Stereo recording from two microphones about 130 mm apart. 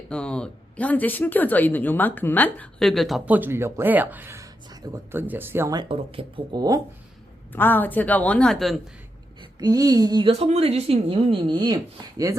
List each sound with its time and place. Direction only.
0.1 s speech: 5° left (ahead or behind)
3.2 s speech: 15° right (ahead or behind)
5.7 s speech: 45° right (ahead or behind)
6.5 s speech: 30° right (ahead or behind)
7.5 s speech: 15° left (ahead or behind)
9.4 s speech: 30° right (ahead or behind)
10.3 s speech: 50° right (ahead or behind); by 12.4 s 25° right (ahead or behind)